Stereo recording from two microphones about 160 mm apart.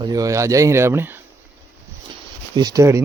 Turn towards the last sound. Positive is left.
turn(degrees=-20)  # may be behind; listen again after turning